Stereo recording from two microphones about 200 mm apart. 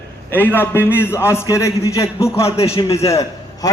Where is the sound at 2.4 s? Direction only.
30° left (ahead or behind).